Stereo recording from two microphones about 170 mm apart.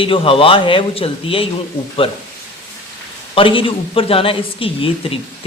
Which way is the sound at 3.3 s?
30° left (ahead or behind).